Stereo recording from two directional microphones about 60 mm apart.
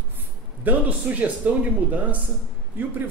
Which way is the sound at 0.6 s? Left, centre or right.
Right.